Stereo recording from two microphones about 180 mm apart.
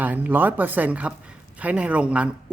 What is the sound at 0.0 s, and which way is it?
Speech, 10° right (ahead or behind).